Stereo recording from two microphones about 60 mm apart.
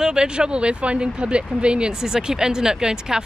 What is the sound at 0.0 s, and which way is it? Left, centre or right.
Speech, centre.